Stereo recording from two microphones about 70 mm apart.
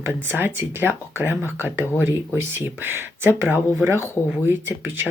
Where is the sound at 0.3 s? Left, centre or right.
Right.